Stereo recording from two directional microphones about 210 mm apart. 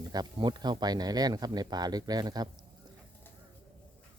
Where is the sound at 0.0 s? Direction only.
20° right (ahead or behind).